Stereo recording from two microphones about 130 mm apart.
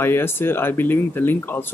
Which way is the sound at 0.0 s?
20° left (ahead or behind).